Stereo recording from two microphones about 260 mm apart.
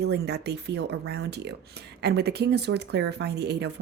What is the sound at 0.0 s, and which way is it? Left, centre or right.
Speech, right.